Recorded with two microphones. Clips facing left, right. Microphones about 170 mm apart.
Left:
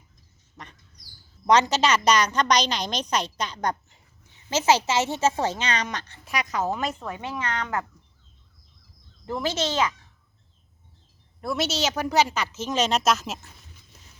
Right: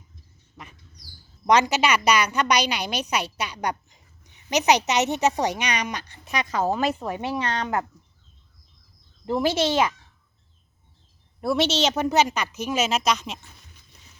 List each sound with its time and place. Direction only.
0.5 s bird: 5° right (ahead or behind)
1.5 s a woman's voice: 10° right (ahead or behind)
6.3 s a woman's voice: 30° right (ahead or behind)
7.0 s a woman's voice: 15° right (ahead or behind)
7.4 s speech: 30° right (ahead or behind)
11.3 s a woman's voice: 5° right (ahead or behind)
11.7 s a woman's voice: 25° right (ahead or behind); by 13.5 s 5° left (ahead or behind)